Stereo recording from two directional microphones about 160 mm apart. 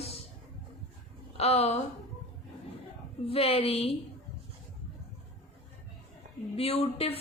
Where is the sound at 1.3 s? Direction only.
40° left (ahead or behind).